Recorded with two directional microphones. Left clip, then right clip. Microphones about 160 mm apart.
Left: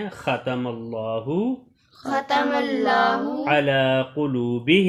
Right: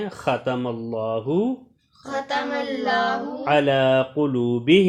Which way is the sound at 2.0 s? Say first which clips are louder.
Left 4 dB; 45° left (ahead or behind).